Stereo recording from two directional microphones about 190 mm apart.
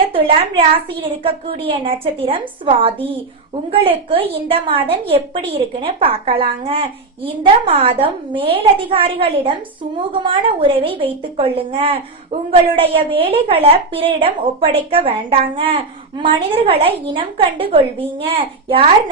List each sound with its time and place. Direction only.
0.1 s a woman's voice: 30° right (ahead or behind)